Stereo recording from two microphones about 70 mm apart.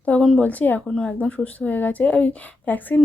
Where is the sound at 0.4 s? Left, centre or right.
Left.